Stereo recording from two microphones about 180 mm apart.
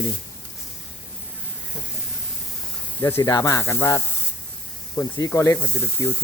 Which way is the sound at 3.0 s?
15° left (ahead or behind).